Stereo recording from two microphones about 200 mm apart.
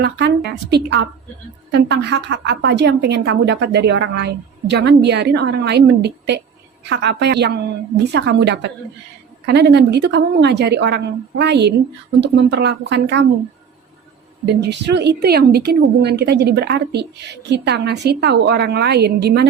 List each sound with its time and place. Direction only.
0.0 s a woman's voice: 55° right (ahead or behind)
14.4 s a woman's voice: 55° right (ahead or behind)